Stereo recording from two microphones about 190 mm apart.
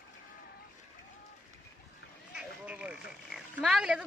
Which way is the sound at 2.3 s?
5° right (ahead or behind).